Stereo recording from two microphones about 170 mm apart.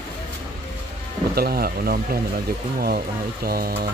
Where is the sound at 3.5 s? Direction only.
60° right (ahead or behind).